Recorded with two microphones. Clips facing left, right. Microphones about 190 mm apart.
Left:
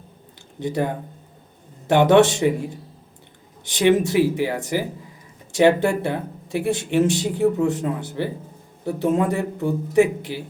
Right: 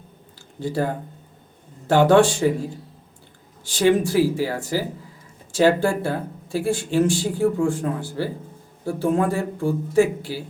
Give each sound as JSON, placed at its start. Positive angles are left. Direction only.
{"t": 0.6, "sound": "speech", "side_deg": 20}